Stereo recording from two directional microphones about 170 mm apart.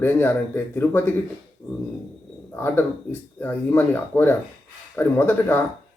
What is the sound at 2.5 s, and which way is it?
Speech, 15° left (ahead or behind).